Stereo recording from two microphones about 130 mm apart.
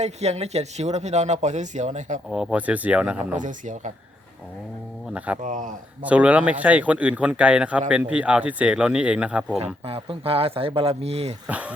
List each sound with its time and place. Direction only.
0.0 s speech: 55° right (ahead or behind)
2.3 s speech: 10° right (ahead or behind)
3.3 s speech: 75° right (ahead or behind)
5.1 s speech: 10° right (ahead or behind)
5.4 s speech: 75° right (ahead or behind)
6.0 s speech: 10° right (ahead or behind)
9.8 s speech: 45° right (ahead or behind)
11.4 s speech: 10° right (ahead or behind)